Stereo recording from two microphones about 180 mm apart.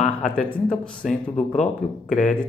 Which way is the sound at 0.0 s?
45° left (ahead or behind).